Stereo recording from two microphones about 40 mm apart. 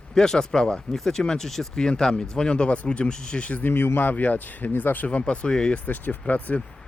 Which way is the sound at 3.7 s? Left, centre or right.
Left.